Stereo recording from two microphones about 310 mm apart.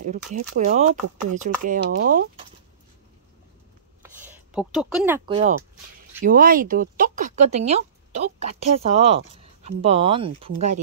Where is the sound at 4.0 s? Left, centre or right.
Centre.